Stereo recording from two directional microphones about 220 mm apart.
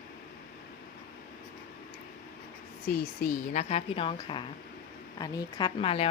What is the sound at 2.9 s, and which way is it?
A woman's voice, 35° left (ahead or behind).